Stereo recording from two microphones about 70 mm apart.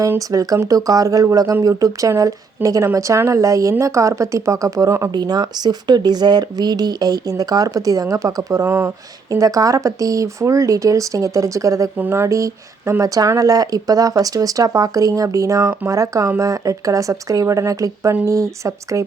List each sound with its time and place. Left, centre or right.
0.2 s speech: right
5.1 s speech: right
8.6 s speech: right
9.3 s speech: right